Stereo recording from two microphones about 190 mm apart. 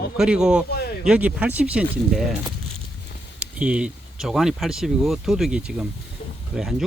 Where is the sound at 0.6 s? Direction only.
55° left (ahead or behind).